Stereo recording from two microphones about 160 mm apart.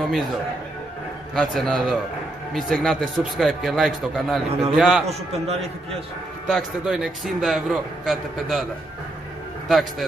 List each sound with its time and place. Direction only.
0.0 s a man's voice: centre (ahead or behind)
1.3 s a man's voice: centre (ahead or behind)
5.0 s a man's voice: 40° right (ahead or behind)
6.5 s a man's voice: centre (ahead or behind)
9.7 s a man's voice: centre (ahead or behind)